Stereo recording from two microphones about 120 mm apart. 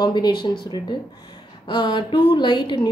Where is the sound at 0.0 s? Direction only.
40° left (ahead or behind).